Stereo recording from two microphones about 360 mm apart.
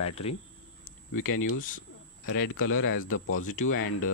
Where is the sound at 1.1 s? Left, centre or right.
Left.